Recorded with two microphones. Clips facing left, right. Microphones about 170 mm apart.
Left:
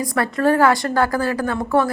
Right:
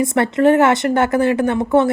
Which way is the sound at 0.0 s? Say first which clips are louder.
Right 5 dB; 25° right (ahead or behind).